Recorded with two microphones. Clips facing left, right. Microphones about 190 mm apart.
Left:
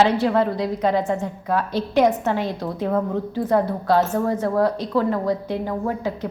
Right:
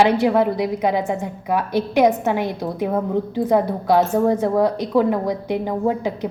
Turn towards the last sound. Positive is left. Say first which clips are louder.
# right 4 dB
turn(degrees=-15)  # may be behind; listen again after turning